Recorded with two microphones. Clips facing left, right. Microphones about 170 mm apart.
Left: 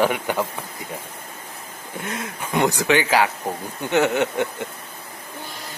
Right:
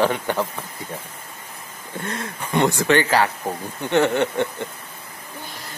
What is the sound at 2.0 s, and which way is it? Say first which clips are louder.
Speech: even; centre (ahead or behind).